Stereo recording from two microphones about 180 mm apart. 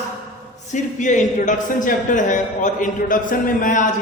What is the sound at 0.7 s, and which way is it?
Speech, 45° left (ahead or behind).